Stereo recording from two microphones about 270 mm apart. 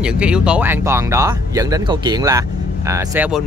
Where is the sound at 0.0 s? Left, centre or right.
Centre.